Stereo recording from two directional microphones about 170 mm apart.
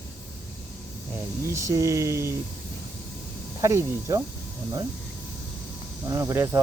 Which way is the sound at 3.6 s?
20° right (ahead or behind).